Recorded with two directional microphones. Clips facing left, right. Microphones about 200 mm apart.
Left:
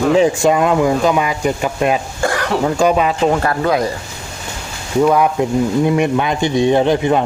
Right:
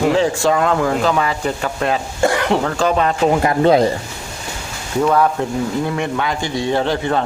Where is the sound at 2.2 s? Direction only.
20° right (ahead or behind).